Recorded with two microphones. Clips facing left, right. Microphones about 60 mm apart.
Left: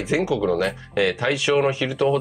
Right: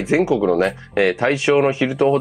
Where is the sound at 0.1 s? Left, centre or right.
Right.